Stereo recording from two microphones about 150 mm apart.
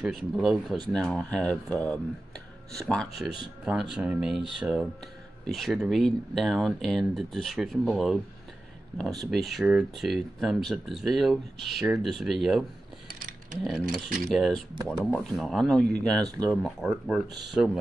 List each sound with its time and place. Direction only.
0.0 s speech: centre (ahead or behind)
14.3 s speech: centre (ahead or behind)